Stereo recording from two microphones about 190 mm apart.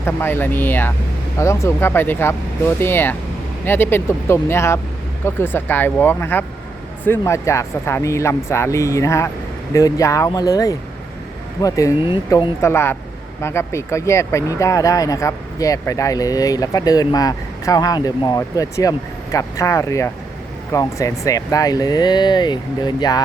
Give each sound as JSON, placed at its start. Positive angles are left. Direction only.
{"t": 0.0, "sound": "speech", "side_deg": 10}
{"t": 12.6, "sound": "speech", "side_deg": 15}